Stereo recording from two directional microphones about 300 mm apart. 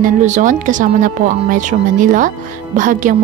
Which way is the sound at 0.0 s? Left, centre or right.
Right.